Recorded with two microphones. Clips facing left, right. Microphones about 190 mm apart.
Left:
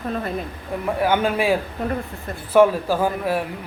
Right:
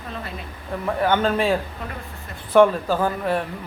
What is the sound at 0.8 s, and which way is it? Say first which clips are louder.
A man's voice: even; 10° left (ahead or behind).